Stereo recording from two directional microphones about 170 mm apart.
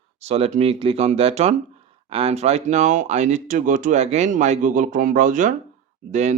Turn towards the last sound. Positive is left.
turn(degrees=-45)  # may be behind; listen again after turning